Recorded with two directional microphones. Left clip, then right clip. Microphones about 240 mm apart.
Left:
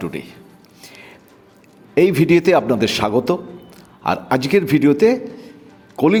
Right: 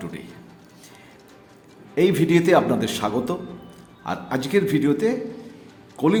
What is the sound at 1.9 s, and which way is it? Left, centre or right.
A man's voice, left.